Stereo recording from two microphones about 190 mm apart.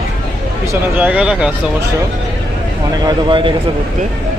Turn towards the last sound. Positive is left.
turn(degrees=-25)  # may be behind; listen again after turning